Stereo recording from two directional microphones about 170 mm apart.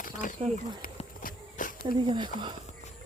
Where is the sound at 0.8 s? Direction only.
55° left (ahead or behind).